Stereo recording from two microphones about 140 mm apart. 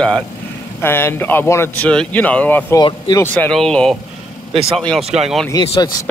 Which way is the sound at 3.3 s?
5° left (ahead or behind).